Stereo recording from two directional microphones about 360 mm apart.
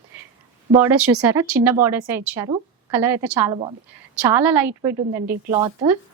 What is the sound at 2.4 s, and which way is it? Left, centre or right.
A woman's voice, centre.